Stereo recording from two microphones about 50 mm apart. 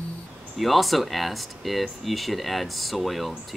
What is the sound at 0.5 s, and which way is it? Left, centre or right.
Speech, centre.